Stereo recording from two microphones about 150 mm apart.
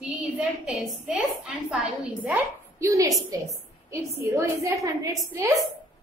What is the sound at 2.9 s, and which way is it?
A woman's voice, 20° right (ahead or behind).